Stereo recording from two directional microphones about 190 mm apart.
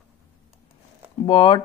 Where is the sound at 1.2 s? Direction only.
25° left (ahead or behind).